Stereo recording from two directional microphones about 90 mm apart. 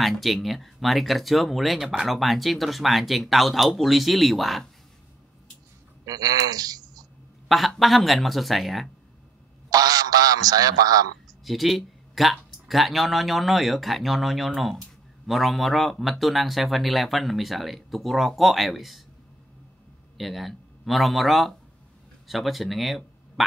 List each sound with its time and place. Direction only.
0.0 s speech: centre (ahead or behind)
6.0 s speech: 45° right (ahead or behind)
7.4 s speech: centre (ahead or behind)
9.7 s a man's voice: 45° right (ahead or behind)
11.4 s speech: centre (ahead or behind)
20.2 s a man's voice: centre (ahead or behind)